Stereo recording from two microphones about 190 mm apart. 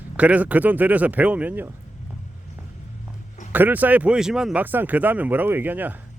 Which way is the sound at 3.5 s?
10° right (ahead or behind).